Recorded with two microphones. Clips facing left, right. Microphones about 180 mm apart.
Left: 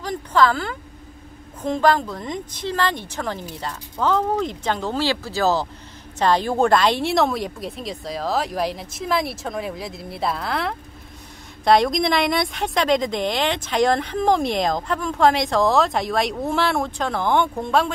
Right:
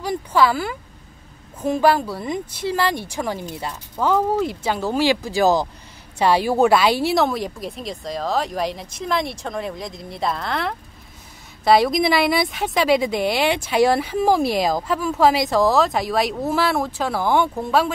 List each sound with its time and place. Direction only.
0.0 s a woman's voice: 10° right (ahead or behind)